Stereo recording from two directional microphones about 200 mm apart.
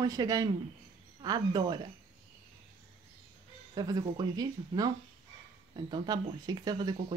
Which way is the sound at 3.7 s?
20° right (ahead or behind).